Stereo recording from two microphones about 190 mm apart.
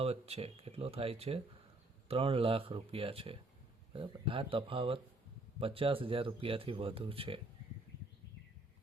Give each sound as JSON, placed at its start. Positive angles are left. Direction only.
{"t": 0.0, "sound": "speech", "side_deg": -30}